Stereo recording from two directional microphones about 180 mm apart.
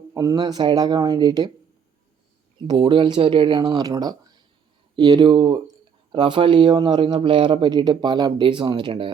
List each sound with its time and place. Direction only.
0.1 s speech: 15° right (ahead or behind)
2.6 s speech: 25° right (ahead or behind)